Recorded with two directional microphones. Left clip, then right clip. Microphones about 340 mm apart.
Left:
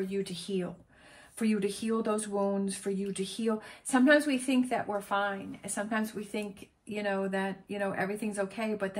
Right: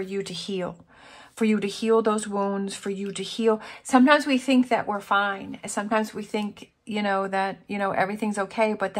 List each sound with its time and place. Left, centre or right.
0.1 s speech: centre